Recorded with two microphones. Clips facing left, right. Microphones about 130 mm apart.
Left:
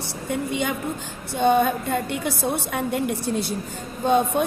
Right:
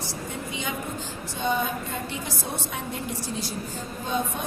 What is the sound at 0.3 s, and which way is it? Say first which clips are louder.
A woman's voice: left 10 dB; 60° left (ahead or behind).